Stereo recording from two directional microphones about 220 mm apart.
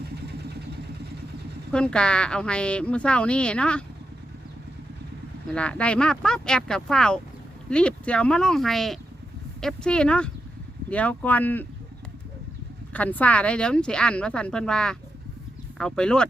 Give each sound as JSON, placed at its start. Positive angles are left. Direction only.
{"t": 0.0, "sound": "vehicle", "side_deg": -50}
{"t": 1.7, "sound": "a woman's voice", "side_deg": 5}
{"t": 5.5, "sound": "a woman's voice", "side_deg": 5}
{"t": 12.9, "sound": "a woman's voice", "side_deg": 5}